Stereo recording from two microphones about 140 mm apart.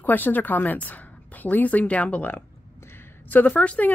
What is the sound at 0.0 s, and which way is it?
A woman's voice, 15° left (ahead or behind).